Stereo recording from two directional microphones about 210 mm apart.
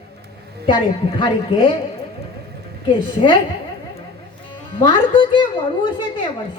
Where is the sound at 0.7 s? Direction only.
20° left (ahead or behind).